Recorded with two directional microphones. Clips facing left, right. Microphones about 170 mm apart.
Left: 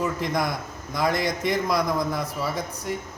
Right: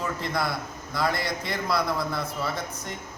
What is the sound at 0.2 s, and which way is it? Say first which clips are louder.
A man's voice: left 3 dB; 15° left (ahead or behind).